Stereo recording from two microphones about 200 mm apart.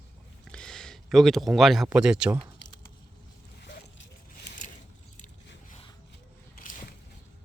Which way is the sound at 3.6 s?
55° left (ahead or behind).